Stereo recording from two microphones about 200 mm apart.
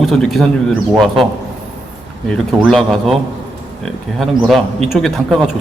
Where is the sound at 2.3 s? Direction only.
Centre (ahead or behind).